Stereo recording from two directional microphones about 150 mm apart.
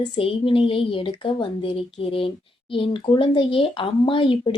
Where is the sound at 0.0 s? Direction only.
35° left (ahead or behind).